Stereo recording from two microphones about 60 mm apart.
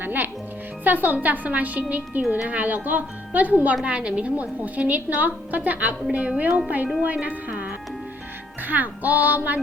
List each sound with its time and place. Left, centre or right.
0.0 s music: right
0.9 s a woman's voice: right